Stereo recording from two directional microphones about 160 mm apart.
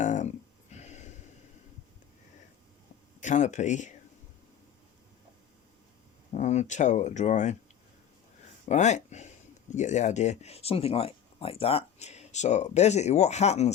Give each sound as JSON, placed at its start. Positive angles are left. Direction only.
{"t": 0.0, "sound": "a sound", "side_deg": 50}
{"t": 3.2, "sound": "speech", "side_deg": 50}
{"t": 6.3, "sound": "speech", "side_deg": 45}
{"t": 8.6, "sound": "speech", "side_deg": 45}